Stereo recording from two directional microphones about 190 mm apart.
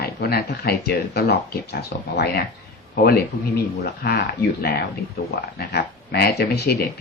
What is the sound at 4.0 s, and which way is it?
Speech, 55° left (ahead or behind).